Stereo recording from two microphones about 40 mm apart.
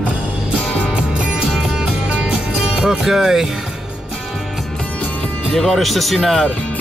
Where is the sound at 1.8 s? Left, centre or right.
Right.